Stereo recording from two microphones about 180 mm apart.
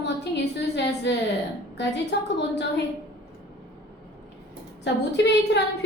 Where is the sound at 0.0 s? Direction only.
75° left (ahead or behind).